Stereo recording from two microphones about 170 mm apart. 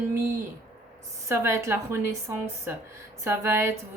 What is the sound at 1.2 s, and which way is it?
A woman's voice, 15° right (ahead or behind).